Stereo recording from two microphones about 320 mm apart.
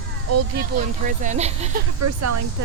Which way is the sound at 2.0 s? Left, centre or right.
Right.